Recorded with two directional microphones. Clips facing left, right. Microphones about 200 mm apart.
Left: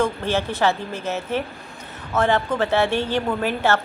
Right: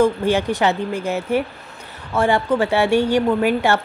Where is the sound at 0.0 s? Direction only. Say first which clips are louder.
Right 5 dB; 15° right (ahead or behind).